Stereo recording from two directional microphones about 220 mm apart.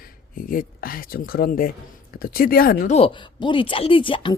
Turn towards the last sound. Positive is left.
turn(degrees=25)  # may be behind; listen again after turning